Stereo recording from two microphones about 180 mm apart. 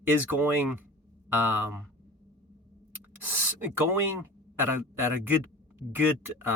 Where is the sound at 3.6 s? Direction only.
10° right (ahead or behind).